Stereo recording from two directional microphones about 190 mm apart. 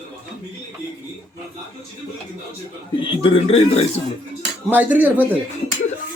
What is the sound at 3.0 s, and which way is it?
Speech, 30° left (ahead or behind).